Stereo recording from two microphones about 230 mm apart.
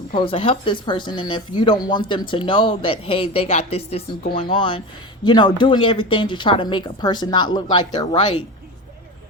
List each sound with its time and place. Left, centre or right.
0.1 s speech: left